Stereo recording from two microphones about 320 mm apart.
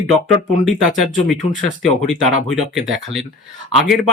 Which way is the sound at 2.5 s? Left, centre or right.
Centre.